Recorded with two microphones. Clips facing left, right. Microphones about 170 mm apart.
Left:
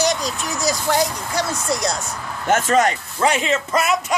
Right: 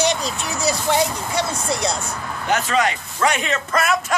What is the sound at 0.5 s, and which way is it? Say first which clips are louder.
Speech: even; centre (ahead or behind).